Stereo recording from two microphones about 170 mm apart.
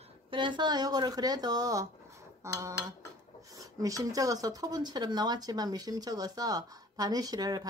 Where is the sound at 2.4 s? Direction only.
15° right (ahead or behind).